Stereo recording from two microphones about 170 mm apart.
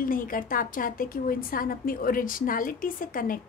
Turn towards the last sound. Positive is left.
turn(degrees=55)  # may be behind; listen again after turning